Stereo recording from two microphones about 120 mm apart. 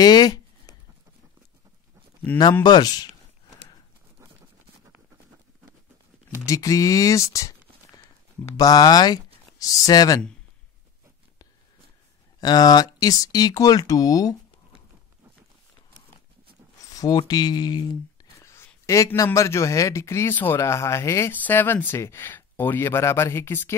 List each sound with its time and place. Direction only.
0.0 s a sound: 35° left (ahead or behind)
2.3 s speech: 15° left (ahead or behind)
2.6 s speech: 35° left (ahead or behind)
6.4 s a man's voice: 30° left (ahead or behind)
12.4 s speech: 35° left (ahead or behind)
16.9 s a sound: 30° left (ahead or behind)
17.3 s speech: 35° left (ahead or behind)
18.4 s a man's voice: 25° left (ahead or behind)